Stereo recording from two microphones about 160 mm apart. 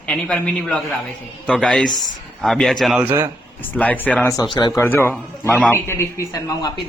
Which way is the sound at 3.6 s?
10° left (ahead or behind).